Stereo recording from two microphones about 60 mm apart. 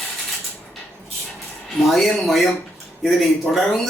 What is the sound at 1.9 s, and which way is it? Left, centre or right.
Speech, centre.